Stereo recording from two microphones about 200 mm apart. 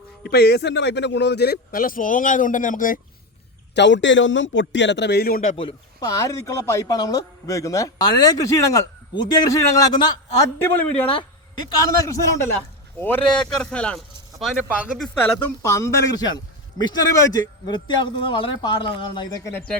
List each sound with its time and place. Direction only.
0.2 s speech: 55° left (ahead or behind)
3.8 s a man's voice: 60° left (ahead or behind); by 5.6 s 40° left (ahead or behind)
5.6 s speech: 20° left (ahead or behind)
10.6 s speech: 10° left (ahead or behind)
15.6 s a man's voice: 15° left (ahead or behind)
19.5 s speech: 5° left (ahead or behind)